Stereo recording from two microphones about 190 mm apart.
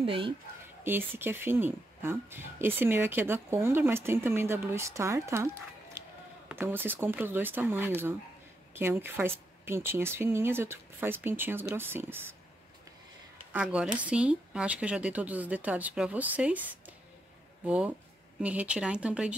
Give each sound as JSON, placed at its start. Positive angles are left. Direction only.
{"t": 0.0, "sound": "speech", "side_deg": -30}
{"t": 0.8, "sound": "speech", "side_deg": -10}
{"t": 13.5, "sound": "speech", "side_deg": -5}